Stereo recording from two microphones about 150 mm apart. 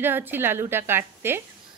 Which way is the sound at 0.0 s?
15° right (ahead or behind).